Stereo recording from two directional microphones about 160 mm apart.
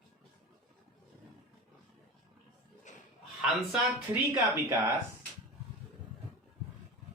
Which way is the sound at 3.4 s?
Centre (ahead or behind).